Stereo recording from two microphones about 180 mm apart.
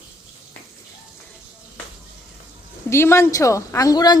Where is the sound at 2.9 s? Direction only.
15° left (ahead or behind).